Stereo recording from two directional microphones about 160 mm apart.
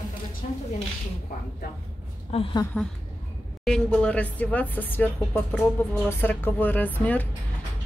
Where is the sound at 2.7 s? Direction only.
5° left (ahead or behind).